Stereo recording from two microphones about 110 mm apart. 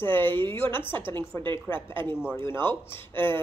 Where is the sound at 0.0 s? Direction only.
20° left (ahead or behind).